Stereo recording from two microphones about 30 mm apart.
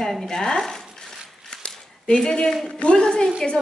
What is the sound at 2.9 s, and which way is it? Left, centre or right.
Speech, left.